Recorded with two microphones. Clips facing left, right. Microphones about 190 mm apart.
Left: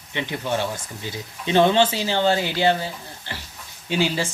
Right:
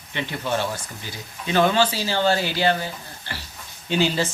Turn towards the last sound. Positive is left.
turn(degrees=10)  # may be behind; listen again after turning